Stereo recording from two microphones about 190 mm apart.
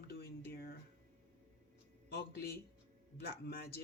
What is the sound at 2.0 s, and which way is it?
Speech, 55° left (ahead or behind).